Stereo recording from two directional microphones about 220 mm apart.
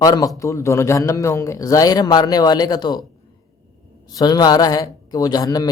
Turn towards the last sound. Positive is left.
turn(degrees=15)  # may be behind; listen again after turning